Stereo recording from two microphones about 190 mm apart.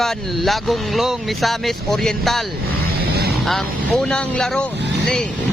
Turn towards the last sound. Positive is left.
turn(degrees=5)  # may be behind; listen again after turning